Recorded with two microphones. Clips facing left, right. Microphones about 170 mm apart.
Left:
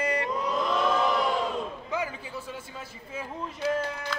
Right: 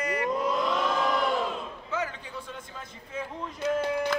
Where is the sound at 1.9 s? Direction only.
10° left (ahead or behind).